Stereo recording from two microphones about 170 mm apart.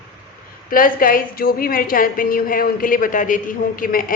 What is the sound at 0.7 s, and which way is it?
A man's voice, 55° left (ahead or behind).